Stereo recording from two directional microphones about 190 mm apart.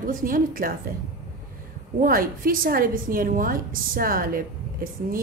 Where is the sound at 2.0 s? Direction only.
50° right (ahead or behind).